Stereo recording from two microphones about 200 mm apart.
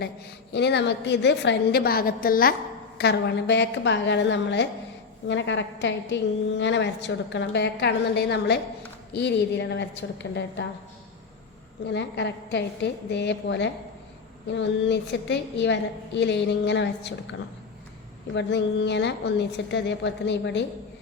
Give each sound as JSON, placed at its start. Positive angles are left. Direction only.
{"t": 0.5, "sound": "a woman's voice", "side_deg": 60}
{"t": 11.9, "sound": "a woman's voice", "side_deg": 60}
{"t": 18.3, "sound": "a woman's voice", "side_deg": 60}